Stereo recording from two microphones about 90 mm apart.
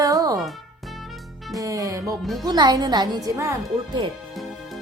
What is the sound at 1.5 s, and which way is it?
Music, 40° right (ahead or behind).